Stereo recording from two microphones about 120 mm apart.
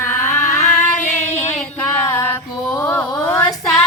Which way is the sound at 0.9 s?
90° left.